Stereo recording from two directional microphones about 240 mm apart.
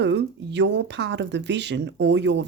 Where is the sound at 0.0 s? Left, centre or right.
Right.